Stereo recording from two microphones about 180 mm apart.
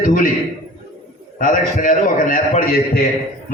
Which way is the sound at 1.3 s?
50° left (ahead or behind).